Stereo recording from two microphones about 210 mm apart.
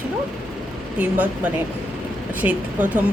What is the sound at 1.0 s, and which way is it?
Speech, 5° right (ahead or behind).